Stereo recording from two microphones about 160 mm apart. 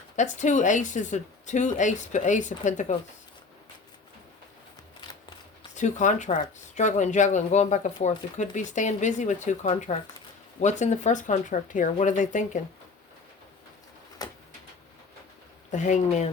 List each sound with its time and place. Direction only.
0.2 s a woman's voice: 50° left (ahead or behind)
5.7 s a woman's voice: 50° left (ahead or behind)
14.2 s a sound: 25° left (ahead or behind)
15.7 s a woman's voice: 45° left (ahead or behind)